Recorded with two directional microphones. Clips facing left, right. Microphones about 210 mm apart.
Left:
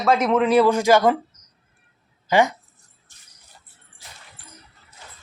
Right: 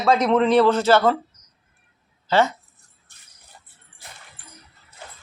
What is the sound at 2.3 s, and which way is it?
Speech, 15° left (ahead or behind).